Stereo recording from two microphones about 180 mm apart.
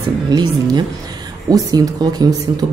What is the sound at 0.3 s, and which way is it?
Speech, 25° right (ahead or behind).